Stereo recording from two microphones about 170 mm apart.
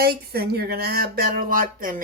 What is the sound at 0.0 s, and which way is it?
Speech, 65° right (ahead or behind).